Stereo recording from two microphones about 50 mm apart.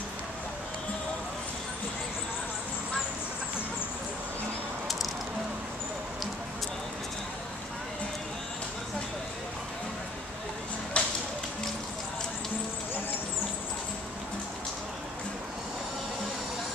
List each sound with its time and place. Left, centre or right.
10.9 s music: left